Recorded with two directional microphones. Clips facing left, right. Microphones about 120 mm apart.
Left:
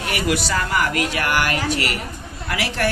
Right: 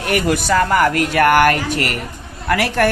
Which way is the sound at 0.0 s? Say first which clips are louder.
Right 4 dB; 50° right (ahead or behind).